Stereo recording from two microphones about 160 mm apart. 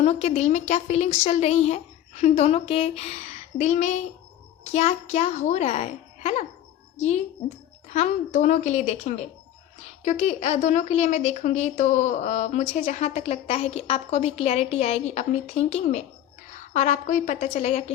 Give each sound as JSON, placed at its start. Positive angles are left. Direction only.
{"t": 0.0, "sound": "a woman's voice", "side_deg": 40}